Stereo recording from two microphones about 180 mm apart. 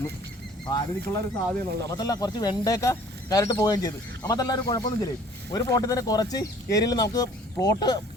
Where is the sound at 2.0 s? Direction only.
20° left (ahead or behind).